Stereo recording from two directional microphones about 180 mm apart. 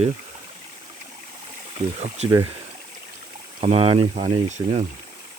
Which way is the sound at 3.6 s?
35° right (ahead or behind).